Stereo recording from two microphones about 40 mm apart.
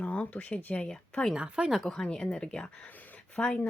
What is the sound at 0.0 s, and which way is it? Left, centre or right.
Speech, left.